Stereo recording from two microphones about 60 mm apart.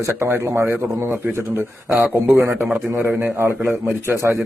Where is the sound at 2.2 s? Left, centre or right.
Right.